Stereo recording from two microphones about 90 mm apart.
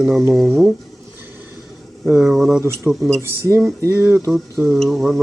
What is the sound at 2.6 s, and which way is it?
Speech, 30° right (ahead or behind).